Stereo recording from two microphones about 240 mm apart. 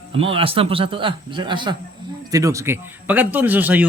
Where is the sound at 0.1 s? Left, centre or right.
Right.